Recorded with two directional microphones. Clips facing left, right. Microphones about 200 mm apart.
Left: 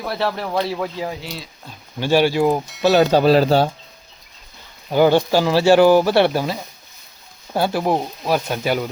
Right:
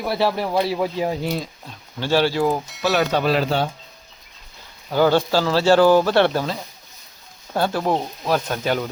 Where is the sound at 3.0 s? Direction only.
30° left (ahead or behind).